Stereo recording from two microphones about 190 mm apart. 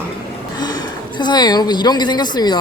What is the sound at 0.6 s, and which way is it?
A woman's voice, 20° left (ahead or behind).